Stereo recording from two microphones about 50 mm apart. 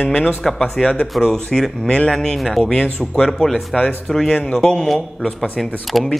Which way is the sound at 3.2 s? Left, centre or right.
Centre.